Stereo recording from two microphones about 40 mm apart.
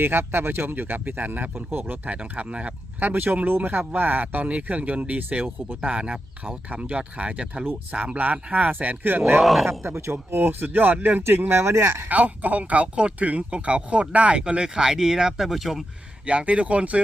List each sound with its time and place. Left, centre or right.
0.0 s speech: right
2.0 s speech: right
3.0 s speech: right
9.4 s speech: centre
9.6 s speech: right
11.4 s speech: right
12.0 s speech: right
14.4 s speech: right; by 15.8 s centre
16.2 s speech: right